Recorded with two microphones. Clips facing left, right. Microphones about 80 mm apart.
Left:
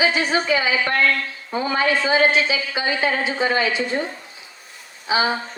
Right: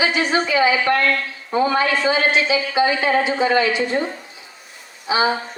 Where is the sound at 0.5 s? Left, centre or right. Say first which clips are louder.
Right 4 dB; right.